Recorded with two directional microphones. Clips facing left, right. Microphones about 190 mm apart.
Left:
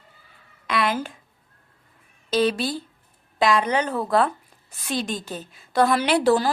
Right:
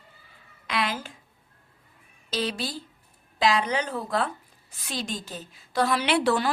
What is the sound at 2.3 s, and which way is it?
A woman's voice, 55° left (ahead or behind).